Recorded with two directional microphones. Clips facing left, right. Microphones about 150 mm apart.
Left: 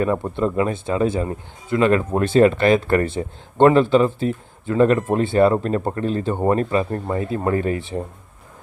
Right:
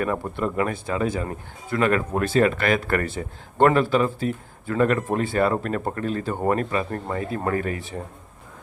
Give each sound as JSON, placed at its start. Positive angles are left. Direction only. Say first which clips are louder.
{"t": 0.0, "sound": "speech", "louder": "left 5 dB", "side_deg": 25}